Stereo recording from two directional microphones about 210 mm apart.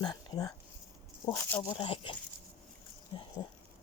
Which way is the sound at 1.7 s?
25° left (ahead or behind).